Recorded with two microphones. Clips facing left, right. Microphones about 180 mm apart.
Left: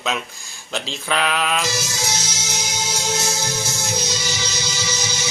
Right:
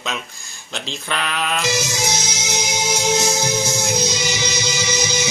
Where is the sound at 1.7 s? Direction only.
15° right (ahead or behind).